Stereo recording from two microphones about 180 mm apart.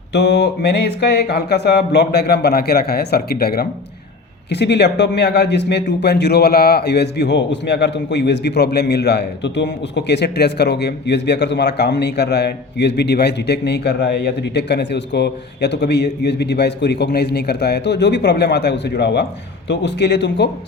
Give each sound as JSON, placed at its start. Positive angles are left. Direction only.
{"t": 0.1, "sound": "speech", "side_deg": 70}
{"t": 4.4, "sound": "a man's voice", "side_deg": 70}